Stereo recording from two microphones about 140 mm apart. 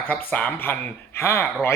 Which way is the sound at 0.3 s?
10° left (ahead or behind).